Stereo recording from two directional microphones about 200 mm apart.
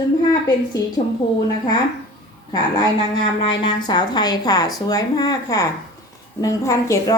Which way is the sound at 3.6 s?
20° left (ahead or behind).